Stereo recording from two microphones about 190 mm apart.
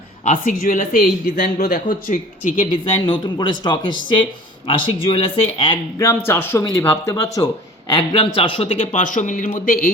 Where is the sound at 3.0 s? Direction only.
25° left (ahead or behind).